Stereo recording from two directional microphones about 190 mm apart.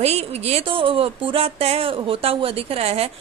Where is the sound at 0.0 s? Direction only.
35° right (ahead or behind).